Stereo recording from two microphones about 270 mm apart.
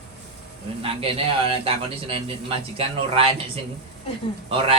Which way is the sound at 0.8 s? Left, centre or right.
Right.